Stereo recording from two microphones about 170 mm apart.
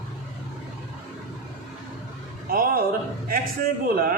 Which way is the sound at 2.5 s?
60° right (ahead or behind).